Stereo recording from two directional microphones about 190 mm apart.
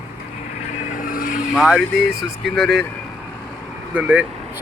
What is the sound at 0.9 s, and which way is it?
Vehicle, 45° left (ahead or behind).